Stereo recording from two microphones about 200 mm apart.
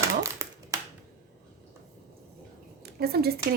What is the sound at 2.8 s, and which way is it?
Speech, 50° right (ahead or behind).